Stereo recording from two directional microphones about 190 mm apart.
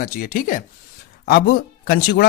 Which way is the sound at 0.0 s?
45° left (ahead or behind).